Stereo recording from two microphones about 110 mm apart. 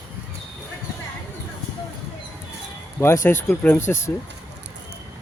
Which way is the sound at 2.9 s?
25° left (ahead or behind).